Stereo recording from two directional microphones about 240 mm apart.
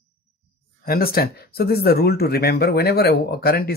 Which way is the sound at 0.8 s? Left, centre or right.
Left.